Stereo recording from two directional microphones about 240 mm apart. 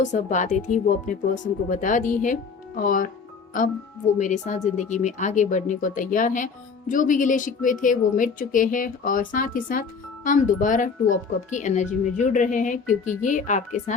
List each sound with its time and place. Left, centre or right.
0.0 s speech: left